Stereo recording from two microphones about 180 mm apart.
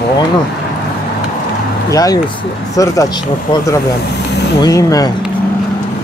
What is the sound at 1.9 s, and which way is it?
Speech, 20° left (ahead or behind).